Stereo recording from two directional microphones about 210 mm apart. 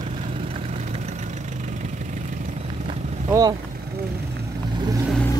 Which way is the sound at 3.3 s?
20° right (ahead or behind).